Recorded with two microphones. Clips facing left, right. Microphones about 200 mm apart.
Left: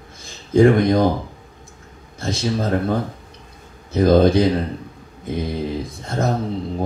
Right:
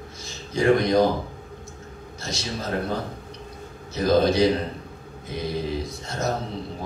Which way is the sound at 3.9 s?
55° left (ahead or behind).